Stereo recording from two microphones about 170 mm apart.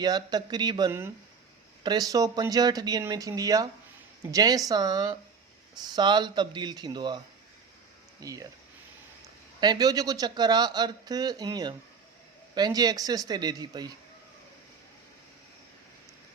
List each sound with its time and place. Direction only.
0.0 s speech: 25° right (ahead or behind)
8.2 s speech: 20° right (ahead or behind)
9.6 s speech: 25° right (ahead or behind)